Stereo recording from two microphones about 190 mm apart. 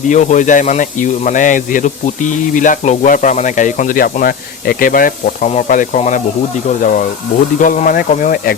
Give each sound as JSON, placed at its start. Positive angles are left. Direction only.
{"t": 0.1, "sound": "speech", "side_deg": 40}
{"t": 7.6, "sound": "speech", "side_deg": 45}